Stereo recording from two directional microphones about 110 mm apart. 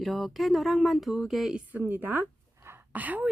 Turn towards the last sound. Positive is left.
turn(degrees=-15)  # may be behind; listen again after turning